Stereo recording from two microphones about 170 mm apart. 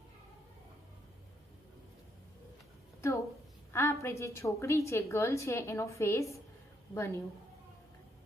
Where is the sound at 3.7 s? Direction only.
15° left (ahead or behind).